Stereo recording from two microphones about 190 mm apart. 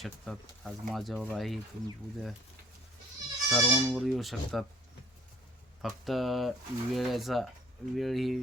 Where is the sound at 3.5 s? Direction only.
Centre (ahead or behind).